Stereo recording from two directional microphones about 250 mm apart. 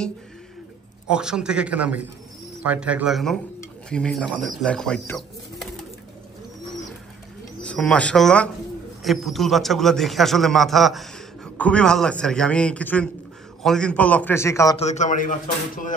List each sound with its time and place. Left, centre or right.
1.1 s a man's voice: centre
7.6 s a man's voice: centre
14.8 s a man's voice: left